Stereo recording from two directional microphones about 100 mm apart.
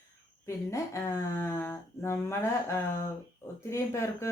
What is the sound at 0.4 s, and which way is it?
Speech, 30° left (ahead or behind).